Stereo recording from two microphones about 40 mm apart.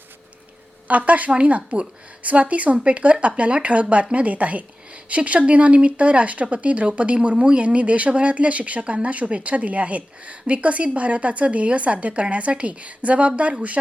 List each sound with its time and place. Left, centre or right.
0.9 s speech: right